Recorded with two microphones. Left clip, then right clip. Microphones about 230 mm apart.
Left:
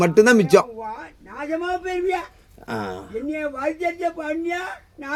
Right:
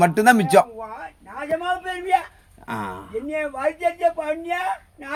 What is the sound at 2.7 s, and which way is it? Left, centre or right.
Speech, centre.